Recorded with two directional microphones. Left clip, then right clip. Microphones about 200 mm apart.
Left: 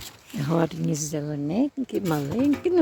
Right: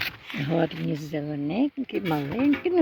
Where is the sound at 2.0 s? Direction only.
Centre (ahead or behind).